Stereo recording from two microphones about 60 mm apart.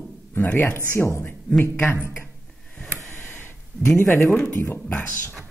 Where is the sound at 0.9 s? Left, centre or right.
Left.